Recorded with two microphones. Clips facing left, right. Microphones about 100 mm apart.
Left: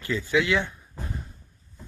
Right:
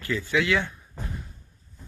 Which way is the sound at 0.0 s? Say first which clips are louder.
Left 1 dB; 20° left (ahead or behind).